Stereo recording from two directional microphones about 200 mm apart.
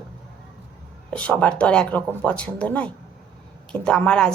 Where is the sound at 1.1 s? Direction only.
5° left (ahead or behind).